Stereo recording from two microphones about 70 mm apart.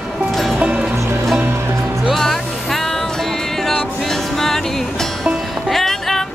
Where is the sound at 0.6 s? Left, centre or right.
Centre.